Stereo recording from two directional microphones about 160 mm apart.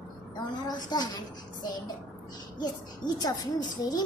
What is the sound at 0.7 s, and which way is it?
A child's voice, 25° left (ahead or behind).